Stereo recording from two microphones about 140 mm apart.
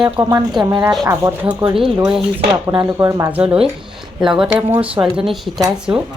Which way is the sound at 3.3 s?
10° right (ahead or behind).